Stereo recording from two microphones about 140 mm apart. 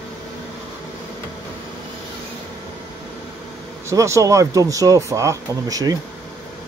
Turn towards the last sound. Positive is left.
turn(degrees=-25)  # may be behind; listen again after turning